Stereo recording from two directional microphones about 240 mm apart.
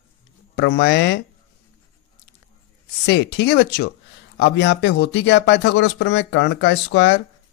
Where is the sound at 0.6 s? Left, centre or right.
Left.